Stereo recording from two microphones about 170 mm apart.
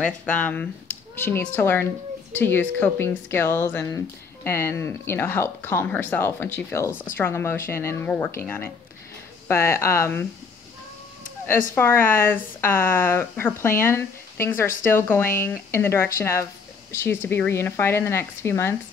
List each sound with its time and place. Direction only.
0.0 s speech: 5° left (ahead or behind)
11.7 s speech: 10° left (ahead or behind)